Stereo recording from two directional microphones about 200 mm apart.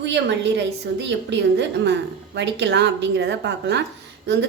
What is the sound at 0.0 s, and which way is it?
A woman's voice, 60° right (ahead or behind).